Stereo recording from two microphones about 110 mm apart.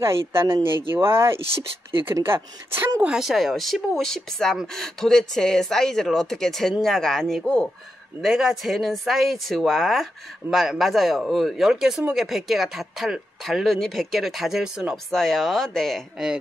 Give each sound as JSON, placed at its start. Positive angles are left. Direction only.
{"t": 0.0, "sound": "speech", "side_deg": -25}
{"t": 3.0, "sound": "speech", "side_deg": -5}